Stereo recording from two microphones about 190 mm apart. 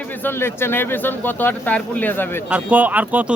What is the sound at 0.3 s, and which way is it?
Speech, 10° left (ahead or behind).